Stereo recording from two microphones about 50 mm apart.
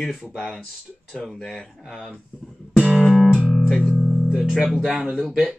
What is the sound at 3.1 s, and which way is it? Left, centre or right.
Music, centre.